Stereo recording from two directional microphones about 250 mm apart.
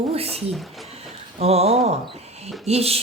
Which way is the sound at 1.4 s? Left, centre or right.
Right.